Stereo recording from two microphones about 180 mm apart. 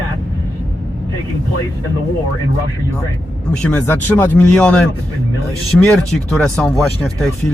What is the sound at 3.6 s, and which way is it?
Speech, 5° left (ahead or behind).